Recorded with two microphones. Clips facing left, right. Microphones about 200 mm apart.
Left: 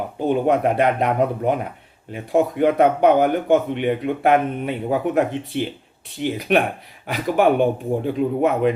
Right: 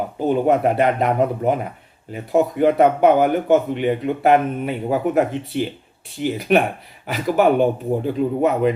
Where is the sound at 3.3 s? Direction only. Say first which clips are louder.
Right 1 dB; 45° right (ahead or behind).